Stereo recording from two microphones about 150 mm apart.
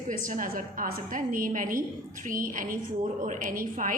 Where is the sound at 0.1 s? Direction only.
60° right (ahead or behind).